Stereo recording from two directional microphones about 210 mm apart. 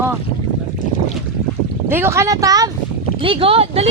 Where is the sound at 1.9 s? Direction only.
10° right (ahead or behind).